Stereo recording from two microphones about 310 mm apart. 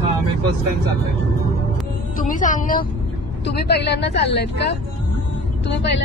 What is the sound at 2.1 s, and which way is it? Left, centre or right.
A woman's voice, left.